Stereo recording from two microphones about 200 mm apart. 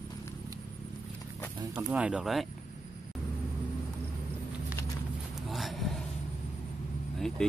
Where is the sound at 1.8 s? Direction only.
5° right (ahead or behind).